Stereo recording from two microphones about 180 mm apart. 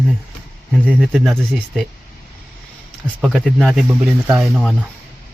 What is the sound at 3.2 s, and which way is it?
Speech, centre (ahead or behind).